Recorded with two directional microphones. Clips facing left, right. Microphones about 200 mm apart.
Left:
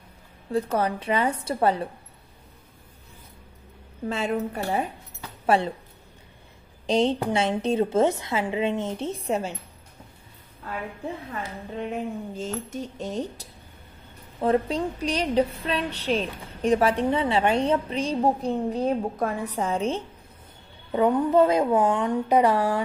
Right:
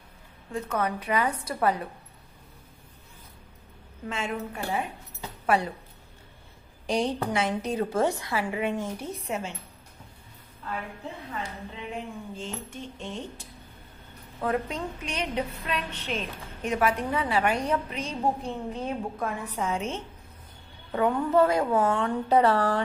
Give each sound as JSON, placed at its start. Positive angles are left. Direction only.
{"t": 0.5, "sound": "a woman's voice", "side_deg": 35}
{"t": 4.1, "sound": "a woman's voice", "side_deg": 40}
{"t": 6.9, "sound": "a woman's voice", "side_deg": 25}
{"t": 11.7, "sound": "a woman's voice", "side_deg": 45}
{"t": 20.9, "sound": "a woman's voice", "side_deg": 20}